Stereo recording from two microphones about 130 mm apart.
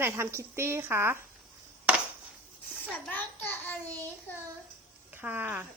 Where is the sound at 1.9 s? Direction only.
10° right (ahead or behind).